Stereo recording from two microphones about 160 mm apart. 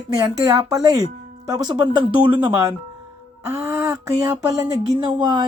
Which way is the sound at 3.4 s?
15° right (ahead or behind).